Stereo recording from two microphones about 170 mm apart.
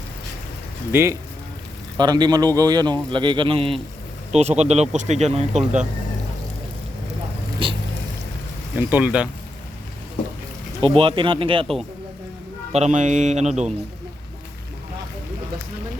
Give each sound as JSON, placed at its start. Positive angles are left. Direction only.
{"t": 0.9, "sound": "a man's voice", "side_deg": -15}
{"t": 8.7, "sound": "speech", "side_deg": -10}
{"t": 10.8, "sound": "speech", "side_deg": -30}
{"t": 12.7, "sound": "speech", "side_deg": -45}